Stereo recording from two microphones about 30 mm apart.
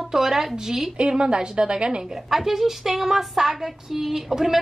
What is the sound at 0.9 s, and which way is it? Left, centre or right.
A woman's voice, right.